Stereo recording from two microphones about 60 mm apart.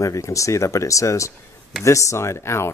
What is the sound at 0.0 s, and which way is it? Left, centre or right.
Speech, left.